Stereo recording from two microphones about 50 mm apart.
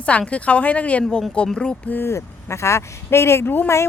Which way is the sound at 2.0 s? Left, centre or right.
Left.